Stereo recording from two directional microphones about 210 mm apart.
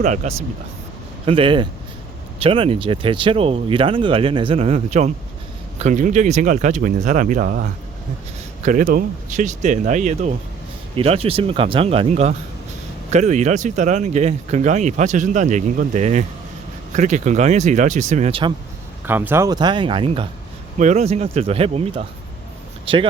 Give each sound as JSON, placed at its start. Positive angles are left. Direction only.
{"t": 0.0, "sound": "speech", "side_deg": -35}
{"t": 19.0, "sound": "speech", "side_deg": -10}